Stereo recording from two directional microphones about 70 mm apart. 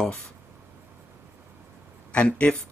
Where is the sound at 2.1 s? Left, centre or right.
Centre.